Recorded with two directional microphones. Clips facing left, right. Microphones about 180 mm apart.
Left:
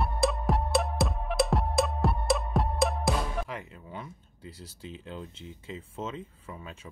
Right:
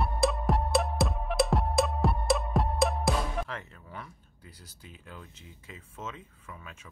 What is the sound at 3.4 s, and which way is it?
Speech, 15° left (ahead or behind).